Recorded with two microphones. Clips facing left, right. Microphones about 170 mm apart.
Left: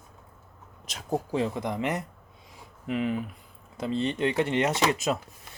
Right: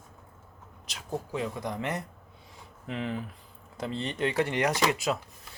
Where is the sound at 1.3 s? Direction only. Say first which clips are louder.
Left 3 dB; 25° left (ahead or behind).